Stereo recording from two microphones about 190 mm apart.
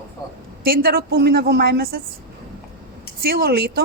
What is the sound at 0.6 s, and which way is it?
A woman's voice, 50° right (ahead or behind).